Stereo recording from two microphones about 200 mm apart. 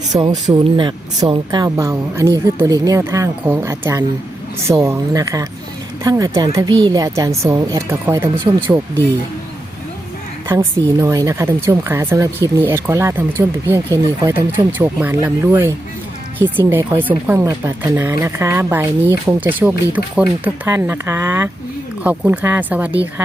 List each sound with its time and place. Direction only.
0.1 s speech: 20° right (ahead or behind)
10.5 s speech: 15° right (ahead or behind)